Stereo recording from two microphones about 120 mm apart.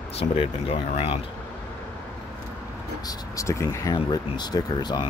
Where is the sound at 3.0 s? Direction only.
25° left (ahead or behind).